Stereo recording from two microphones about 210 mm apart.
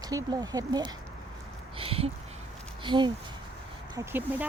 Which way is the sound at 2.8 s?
20° right (ahead or behind).